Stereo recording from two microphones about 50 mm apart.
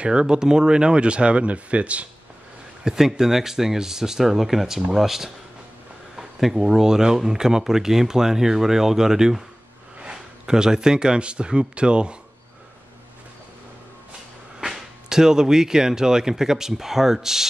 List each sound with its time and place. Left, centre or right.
0.0 s speech: centre
2.8 s speech: centre
14.6 s speech: centre